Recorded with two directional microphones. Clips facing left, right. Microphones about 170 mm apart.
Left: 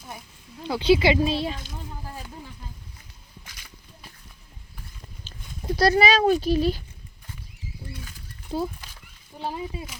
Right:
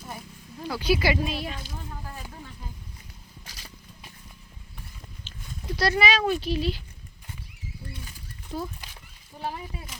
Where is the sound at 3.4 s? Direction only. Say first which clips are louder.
Right 5 dB; 35° right (ahead or behind).